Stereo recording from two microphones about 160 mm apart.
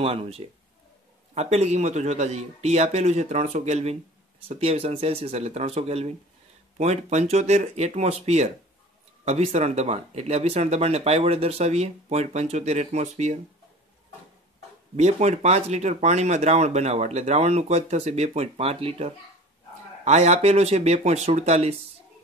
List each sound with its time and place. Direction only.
0.0 s speech: 35° right (ahead or behind)
15.0 s speech: 45° right (ahead or behind)